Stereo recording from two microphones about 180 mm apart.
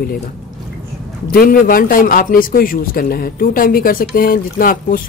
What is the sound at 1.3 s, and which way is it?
A man's voice, 55° left (ahead or behind).